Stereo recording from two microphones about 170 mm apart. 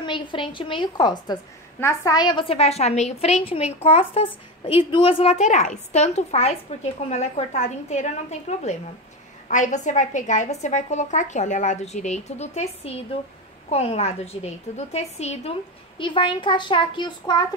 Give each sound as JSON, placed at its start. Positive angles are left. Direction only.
{"t": 0.0, "sound": "a woman's voice", "side_deg": 30}